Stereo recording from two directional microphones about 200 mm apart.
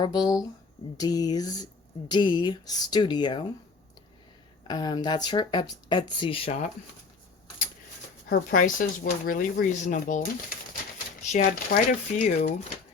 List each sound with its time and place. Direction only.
0.0 s speech: 20° left (ahead or behind)
4.7 s speech: 20° left (ahead or behind)
8.3 s speech: 45° left (ahead or behind)